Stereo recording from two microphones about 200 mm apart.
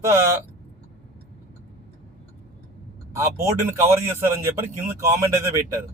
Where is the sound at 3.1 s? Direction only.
15° right (ahead or behind).